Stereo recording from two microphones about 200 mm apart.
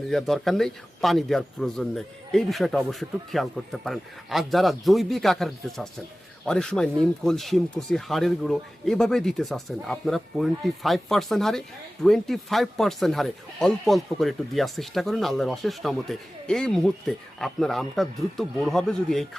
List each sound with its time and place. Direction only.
0.1 s speech: centre (ahead or behind)